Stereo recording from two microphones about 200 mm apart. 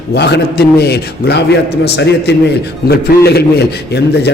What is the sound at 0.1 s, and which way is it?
A man's voice, 55° left (ahead or behind).